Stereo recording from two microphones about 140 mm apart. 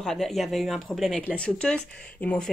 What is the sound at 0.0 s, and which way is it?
Speech, 5° left (ahead or behind).